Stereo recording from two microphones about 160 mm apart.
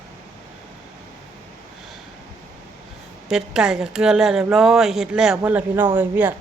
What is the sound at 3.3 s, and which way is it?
A woman's voice, 5° right (ahead or behind).